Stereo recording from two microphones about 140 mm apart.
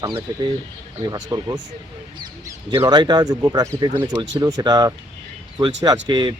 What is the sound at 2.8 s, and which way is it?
Speech, 30° right (ahead or behind).